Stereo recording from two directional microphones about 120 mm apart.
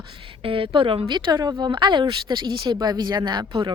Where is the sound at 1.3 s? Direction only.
35° right (ahead or behind).